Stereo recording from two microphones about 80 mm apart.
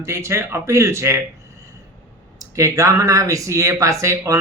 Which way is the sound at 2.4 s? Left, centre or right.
Right.